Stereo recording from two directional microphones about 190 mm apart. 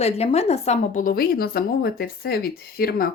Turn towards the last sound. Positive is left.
turn(degrees=50)  # may be behind; listen again after turning